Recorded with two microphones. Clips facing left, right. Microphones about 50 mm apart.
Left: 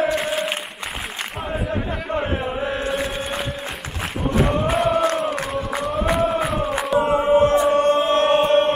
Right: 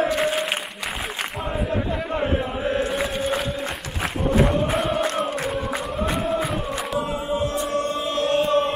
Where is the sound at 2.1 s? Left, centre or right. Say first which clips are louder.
Left 1 dB; centre.